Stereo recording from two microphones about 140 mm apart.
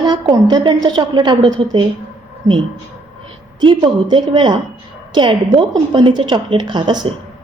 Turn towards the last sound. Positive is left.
turn(degrees=-35)  # may be behind; listen again after turning